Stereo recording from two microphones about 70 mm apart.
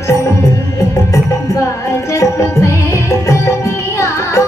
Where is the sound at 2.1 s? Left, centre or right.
Left.